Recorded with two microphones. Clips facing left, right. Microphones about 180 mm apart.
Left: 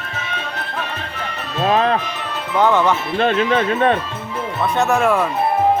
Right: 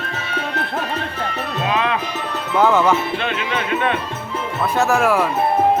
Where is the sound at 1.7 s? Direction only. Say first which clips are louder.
Left 5 dB; 40° left (ahead or behind).